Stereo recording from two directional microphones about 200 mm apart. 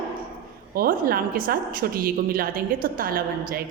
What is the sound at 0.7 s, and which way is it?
A woman's voice, 45° right (ahead or behind).